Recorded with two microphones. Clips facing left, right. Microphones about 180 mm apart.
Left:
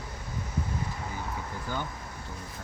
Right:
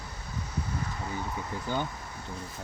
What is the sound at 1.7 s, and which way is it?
Speech, 20° right (ahead or behind).